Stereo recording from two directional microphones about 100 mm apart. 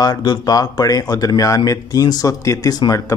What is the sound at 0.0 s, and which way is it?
Speech, 45° left (ahead or behind).